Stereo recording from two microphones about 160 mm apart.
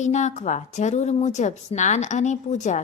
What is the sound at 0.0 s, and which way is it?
A woman's voice, 50° left (ahead or behind).